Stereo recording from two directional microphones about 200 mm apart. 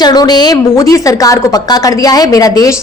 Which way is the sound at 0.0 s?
20° left (ahead or behind).